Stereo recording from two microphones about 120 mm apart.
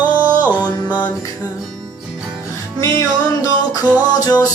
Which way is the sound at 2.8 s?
25° left (ahead or behind).